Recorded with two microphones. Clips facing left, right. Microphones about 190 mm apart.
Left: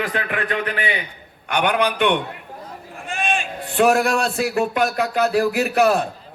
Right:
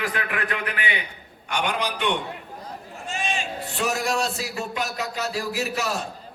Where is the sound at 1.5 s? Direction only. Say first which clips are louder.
Left 7 dB; 60° left (ahead or behind).